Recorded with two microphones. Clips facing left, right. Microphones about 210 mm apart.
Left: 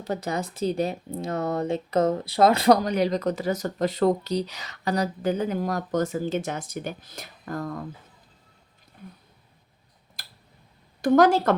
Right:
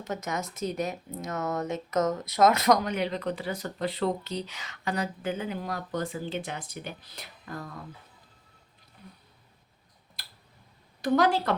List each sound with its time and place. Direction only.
0.0 s speech: 35° left (ahead or behind)
10.2 s tick-tock: 45° left (ahead or behind)
11.0 s a woman's voice: 45° left (ahead or behind)